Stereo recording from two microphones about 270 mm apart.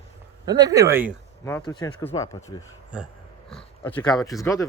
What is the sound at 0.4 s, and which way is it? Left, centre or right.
Speech, centre.